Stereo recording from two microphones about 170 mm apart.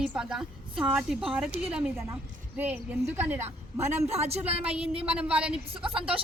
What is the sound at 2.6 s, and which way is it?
Speech, 10° right (ahead or behind).